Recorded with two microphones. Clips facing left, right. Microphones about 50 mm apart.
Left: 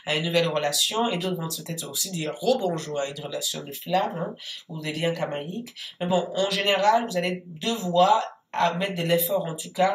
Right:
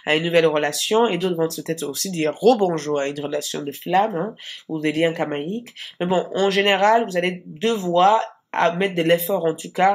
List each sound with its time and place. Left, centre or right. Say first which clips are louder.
0.0 s speech: right 7 dB; right